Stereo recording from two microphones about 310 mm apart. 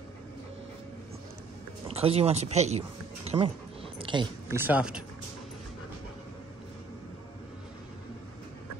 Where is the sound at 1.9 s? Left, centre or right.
Centre.